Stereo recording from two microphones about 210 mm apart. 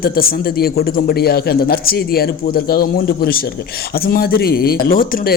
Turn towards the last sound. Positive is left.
turn(degrees=45)  # may be behind; listen again after turning